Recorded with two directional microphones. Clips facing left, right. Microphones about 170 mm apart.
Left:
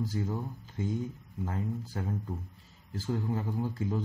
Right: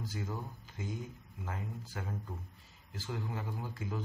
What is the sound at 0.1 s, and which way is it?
Speech, 35° left (ahead or behind).